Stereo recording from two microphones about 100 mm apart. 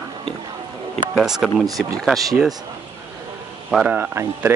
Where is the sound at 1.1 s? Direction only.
5° right (ahead or behind).